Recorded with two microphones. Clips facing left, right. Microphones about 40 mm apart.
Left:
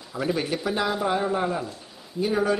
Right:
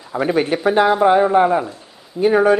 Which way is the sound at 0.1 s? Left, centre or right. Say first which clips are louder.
Right 9 dB; right.